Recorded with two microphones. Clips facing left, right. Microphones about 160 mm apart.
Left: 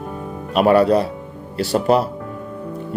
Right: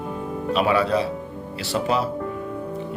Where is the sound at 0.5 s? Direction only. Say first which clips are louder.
Left 7 dB; 50° left (ahead or behind).